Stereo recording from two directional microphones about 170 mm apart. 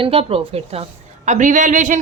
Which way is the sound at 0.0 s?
35° right (ahead or behind).